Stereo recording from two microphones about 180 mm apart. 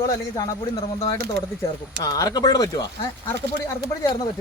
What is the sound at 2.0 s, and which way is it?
Speech, 20° left (ahead or behind).